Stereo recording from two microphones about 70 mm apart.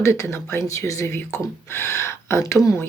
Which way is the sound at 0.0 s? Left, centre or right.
Left.